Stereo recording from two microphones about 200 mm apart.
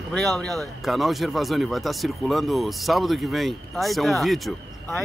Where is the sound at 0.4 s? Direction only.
Centre (ahead or behind).